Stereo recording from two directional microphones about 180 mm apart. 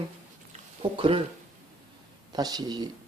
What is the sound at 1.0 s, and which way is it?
Speech, 30° right (ahead or behind).